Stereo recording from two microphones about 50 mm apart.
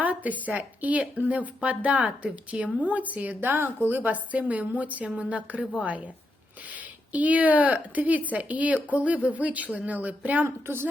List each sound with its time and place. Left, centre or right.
0.0 s speech: right
3.4 s speech: right
3.8 s speech: right
6.7 s speech: right